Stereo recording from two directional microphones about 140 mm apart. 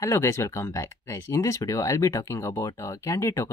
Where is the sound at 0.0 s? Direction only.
20° left (ahead or behind).